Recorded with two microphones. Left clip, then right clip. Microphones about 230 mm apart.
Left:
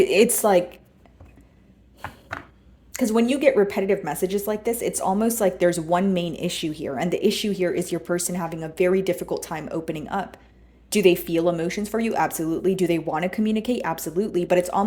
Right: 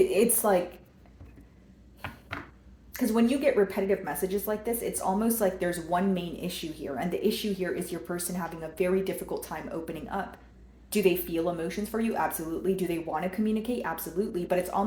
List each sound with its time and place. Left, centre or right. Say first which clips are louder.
0.0 s a woman's voice: left 6 dB; left
2.9 s a woman's voice: left 5 dB; left